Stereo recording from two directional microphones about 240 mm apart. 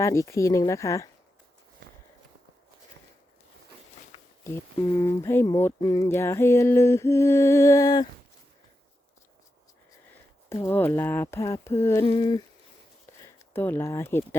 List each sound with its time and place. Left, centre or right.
0.0 s speech: centre
4.4 s speech: centre
10.5 s speech: centre